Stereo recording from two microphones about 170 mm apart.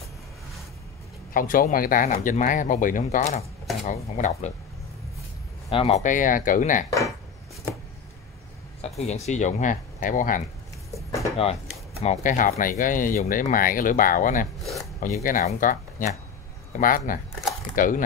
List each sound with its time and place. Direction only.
1.3 s speech: 55° left (ahead or behind)
5.7 s speech: 35° left (ahead or behind)
8.8 s speech: 40° left (ahead or behind)
11.1 s a sound: 35° left (ahead or behind)
12.0 s speech: 45° left (ahead or behind)
14.6 s filing: centre (ahead or behind)
15.0 s speech: 50° left (ahead or behind)